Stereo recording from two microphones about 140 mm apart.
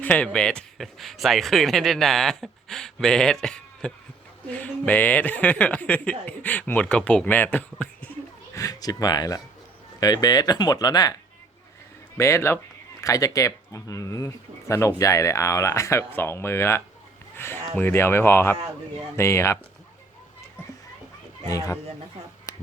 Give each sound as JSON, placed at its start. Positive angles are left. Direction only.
{"t": 0.0, "sound": "speech", "side_deg": 10}
{"t": 8.5, "sound": "speech", "side_deg": 25}
{"t": 17.3, "sound": "a sound", "side_deg": 15}
{"t": 17.7, "sound": "speech", "side_deg": 15}
{"t": 21.4, "sound": "speech", "side_deg": 20}